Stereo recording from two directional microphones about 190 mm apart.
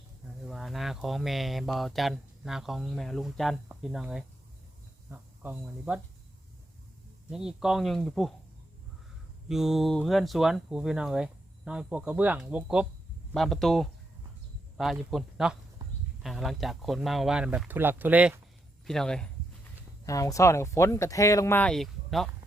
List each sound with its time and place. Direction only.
0.4 s speech: centre (ahead or behind)
7.3 s speech: 5° right (ahead or behind)
9.5 s speech: centre (ahead or behind)
15.8 s a sound: 20° right (ahead or behind)
16.2 s speech: centre (ahead or behind)
18.9 s speech: 5° left (ahead or behind)
20.1 s speech: 15° left (ahead or behind); by 22.3 s centre (ahead or behind)